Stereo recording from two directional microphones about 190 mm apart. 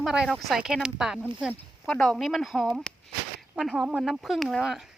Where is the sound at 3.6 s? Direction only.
Centre (ahead or behind).